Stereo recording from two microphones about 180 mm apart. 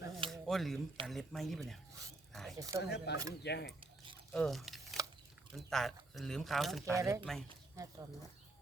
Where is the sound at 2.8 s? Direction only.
65° left (ahead or behind).